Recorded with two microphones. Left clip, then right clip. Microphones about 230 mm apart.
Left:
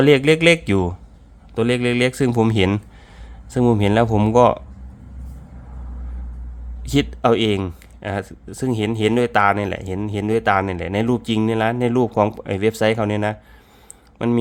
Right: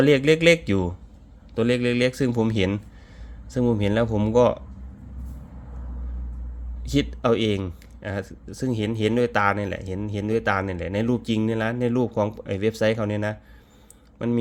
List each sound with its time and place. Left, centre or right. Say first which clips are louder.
0.0 s a man's voice: left 4 dB; centre
6.8 s speech: left 5 dB; left